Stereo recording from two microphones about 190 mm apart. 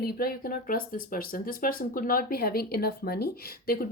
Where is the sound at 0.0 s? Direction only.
55° left (ahead or behind).